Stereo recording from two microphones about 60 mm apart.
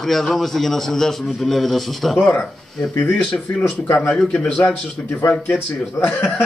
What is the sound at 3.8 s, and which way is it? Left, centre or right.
Speech, left.